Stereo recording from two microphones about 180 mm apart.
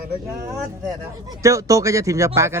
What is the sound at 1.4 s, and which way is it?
Speech, 15° right (ahead or behind).